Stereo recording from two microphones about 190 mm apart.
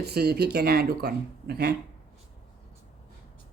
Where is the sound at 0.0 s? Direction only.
55° right (ahead or behind).